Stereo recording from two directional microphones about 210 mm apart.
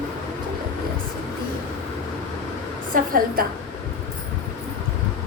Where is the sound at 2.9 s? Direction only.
40° right (ahead or behind).